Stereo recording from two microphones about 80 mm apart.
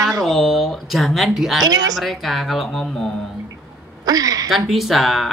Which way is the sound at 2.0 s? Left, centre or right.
Centre.